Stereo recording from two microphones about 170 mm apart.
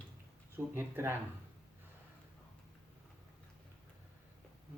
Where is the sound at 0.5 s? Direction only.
15° right (ahead or behind).